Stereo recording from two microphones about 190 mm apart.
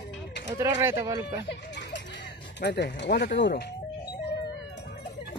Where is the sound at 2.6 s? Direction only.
60° left (ahead or behind).